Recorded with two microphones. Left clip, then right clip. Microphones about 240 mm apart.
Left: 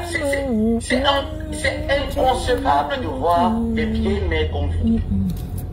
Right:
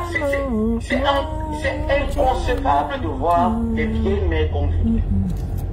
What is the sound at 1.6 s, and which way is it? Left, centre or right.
Speech, left.